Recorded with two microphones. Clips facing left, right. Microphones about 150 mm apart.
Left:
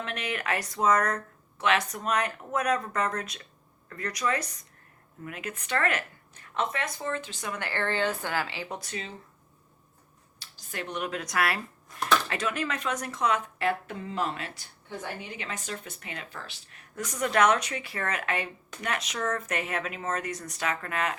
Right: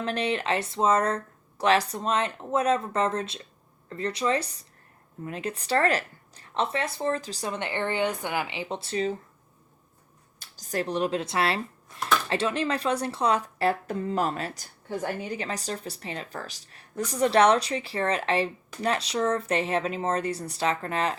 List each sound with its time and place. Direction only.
0.0 s speech: 30° right (ahead or behind)
10.4 s speech: 40° right (ahead or behind)